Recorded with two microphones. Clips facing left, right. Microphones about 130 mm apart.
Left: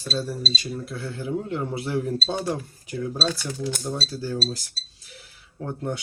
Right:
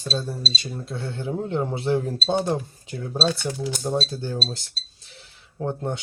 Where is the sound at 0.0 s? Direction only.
20° right (ahead or behind).